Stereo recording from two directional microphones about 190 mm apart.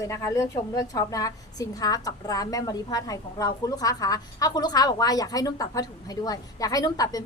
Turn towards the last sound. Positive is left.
turn(degrees=20)  # may be behind; listen again after turning